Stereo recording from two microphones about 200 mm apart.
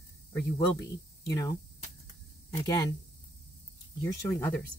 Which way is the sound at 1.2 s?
15° left (ahead or behind).